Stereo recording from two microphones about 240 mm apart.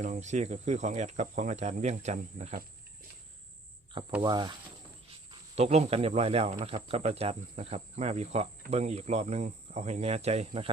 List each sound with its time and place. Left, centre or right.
0.0 s speech: right
4.2 s speech: centre